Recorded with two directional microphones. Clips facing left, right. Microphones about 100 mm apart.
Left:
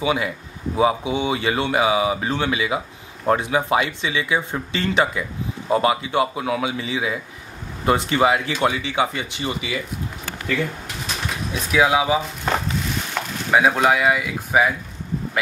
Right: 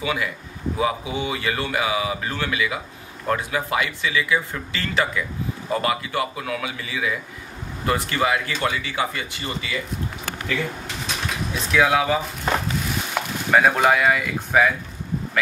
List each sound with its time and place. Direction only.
0.0 s speech: 25° left (ahead or behind)
11.5 s speech: 10° left (ahead or behind)
13.2 s chop: 10° right (ahead or behind)
13.5 s speech: 5° left (ahead or behind)